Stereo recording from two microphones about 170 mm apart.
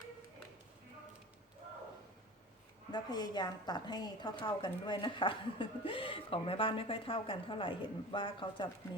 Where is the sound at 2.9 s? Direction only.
25° left (ahead or behind).